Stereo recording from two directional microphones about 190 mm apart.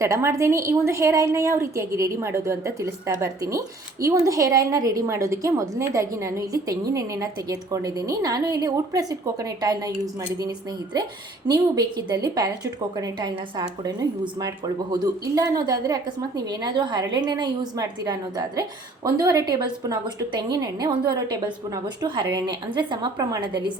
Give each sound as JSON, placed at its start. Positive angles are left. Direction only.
{"t": 0.0, "sound": "a woman's voice", "side_deg": -15}
{"t": 11.4, "sound": "a woman's voice", "side_deg": -20}